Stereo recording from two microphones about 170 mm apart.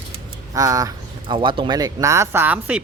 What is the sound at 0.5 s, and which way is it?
Speech, 20° right (ahead or behind).